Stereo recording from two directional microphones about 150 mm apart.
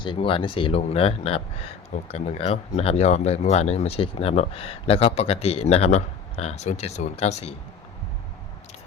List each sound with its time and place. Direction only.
0.0 s speech: 35° left (ahead or behind)